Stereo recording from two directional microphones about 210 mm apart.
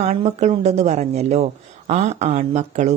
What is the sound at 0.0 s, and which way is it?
Speech, 30° right (ahead or behind).